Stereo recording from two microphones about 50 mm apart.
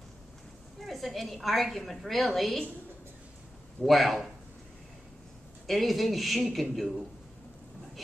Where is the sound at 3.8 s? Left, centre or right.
Centre.